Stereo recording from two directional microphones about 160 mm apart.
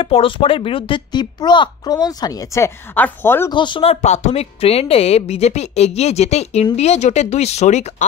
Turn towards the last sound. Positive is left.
turn(degrees=45)  # may be behind; listen again after turning